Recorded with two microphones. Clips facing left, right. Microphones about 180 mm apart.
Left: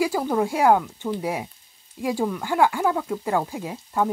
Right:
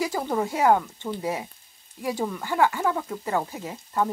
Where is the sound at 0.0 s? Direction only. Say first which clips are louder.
Left 4 dB; 10° left (ahead or behind).